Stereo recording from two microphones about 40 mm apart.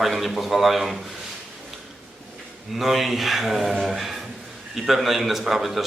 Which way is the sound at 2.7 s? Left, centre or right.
Centre.